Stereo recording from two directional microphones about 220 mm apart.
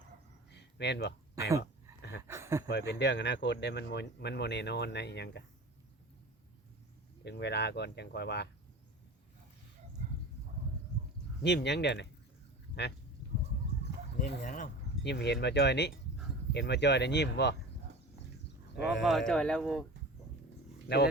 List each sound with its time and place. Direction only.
0.5 s a sound: 50° left (ahead or behind)
1.4 s a sound: 15° right (ahead or behind)
2.6 s speech: 45° left (ahead or behind)
7.3 s speech: 50° left (ahead or behind)
11.4 s speech: 50° left (ahead or behind)
14.2 s speech: 35° left (ahead or behind)
15.0 s speech: 50° left (ahead or behind)
19.0 s speech: centre (ahead or behind)
20.8 s speech: 45° left (ahead or behind)